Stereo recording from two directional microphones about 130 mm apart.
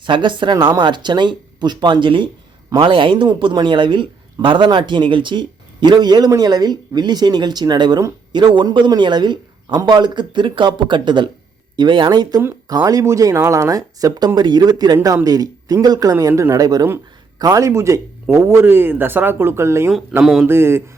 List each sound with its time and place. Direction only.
0.0 s speech: 40° right (ahead or behind); by 19.9 s 20° right (ahead or behind)
20.2 s speech: centre (ahead or behind)
20.5 s speech: 20° right (ahead or behind)